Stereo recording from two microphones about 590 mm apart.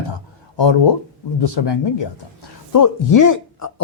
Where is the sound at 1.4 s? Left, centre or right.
Left.